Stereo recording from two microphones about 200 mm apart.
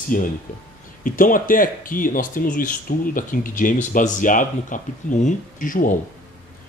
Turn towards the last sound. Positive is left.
turn(degrees=40)  # may be behind; listen again after turning